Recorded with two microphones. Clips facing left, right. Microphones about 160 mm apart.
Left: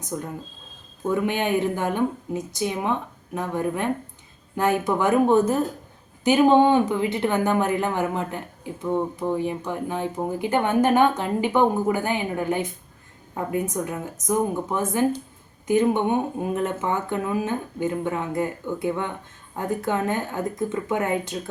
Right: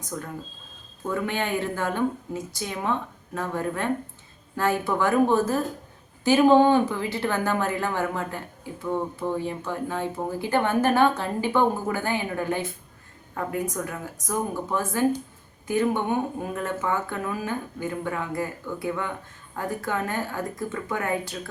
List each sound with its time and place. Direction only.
0.1 s a woman's voice: 20° left (ahead or behind)